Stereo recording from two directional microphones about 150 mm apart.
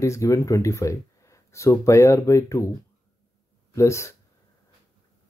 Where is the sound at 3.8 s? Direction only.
20° left (ahead or behind).